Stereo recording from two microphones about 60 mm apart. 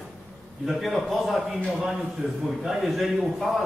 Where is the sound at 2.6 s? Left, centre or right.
Centre.